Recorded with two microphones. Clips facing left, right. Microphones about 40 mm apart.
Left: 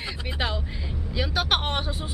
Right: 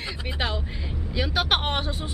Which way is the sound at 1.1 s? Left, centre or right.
Centre.